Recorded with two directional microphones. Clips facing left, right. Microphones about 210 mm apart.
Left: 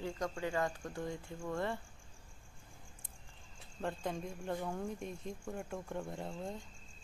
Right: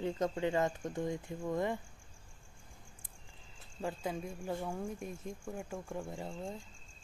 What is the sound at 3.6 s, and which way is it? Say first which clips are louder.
Speech: right 1 dB; centre (ahead or behind).